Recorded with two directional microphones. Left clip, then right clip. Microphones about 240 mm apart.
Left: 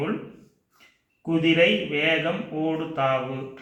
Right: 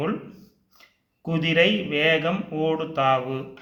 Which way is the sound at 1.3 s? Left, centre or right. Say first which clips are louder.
Left 1 dB; right.